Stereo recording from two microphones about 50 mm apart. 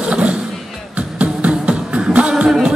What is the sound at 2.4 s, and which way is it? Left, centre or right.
Music, centre.